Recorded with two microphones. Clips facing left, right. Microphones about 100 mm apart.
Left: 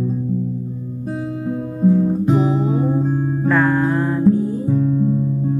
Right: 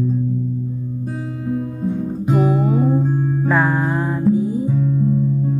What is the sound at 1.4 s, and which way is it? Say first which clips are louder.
Music: left 4 dB; 15° left (ahead or behind).